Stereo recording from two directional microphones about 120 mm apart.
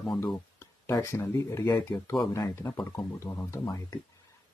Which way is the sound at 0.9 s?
20° left (ahead or behind).